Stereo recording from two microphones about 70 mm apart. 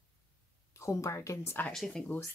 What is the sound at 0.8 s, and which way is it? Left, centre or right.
Speech, left.